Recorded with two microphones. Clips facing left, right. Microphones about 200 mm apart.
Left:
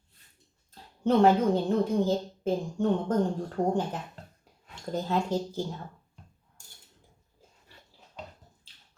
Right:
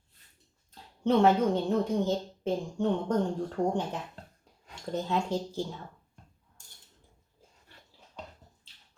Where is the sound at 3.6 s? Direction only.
15° left (ahead or behind).